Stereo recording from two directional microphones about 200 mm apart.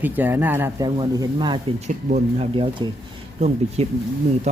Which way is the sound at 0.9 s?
20° right (ahead or behind).